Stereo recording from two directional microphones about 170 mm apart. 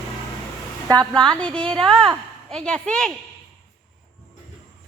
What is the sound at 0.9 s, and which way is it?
Speech, 25° right (ahead or behind).